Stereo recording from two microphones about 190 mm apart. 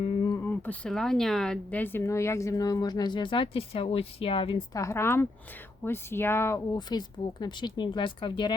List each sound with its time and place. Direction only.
0.0 s speech: 20° left (ahead or behind)
4.8 s speech: 15° left (ahead or behind)